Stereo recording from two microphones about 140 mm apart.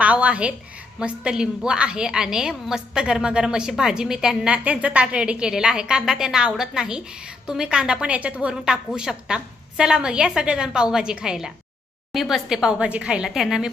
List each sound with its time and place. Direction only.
0.0 s a woman's voice: 10° right (ahead or behind)